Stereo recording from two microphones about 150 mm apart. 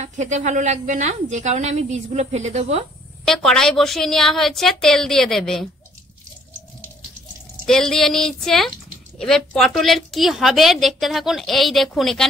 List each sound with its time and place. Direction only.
0.0 s a woman's voice: 50° right (ahead or behind)
3.3 s a woman's voice: 5° left (ahead or behind)
7.6 s a woman's voice: 5° left (ahead or behind)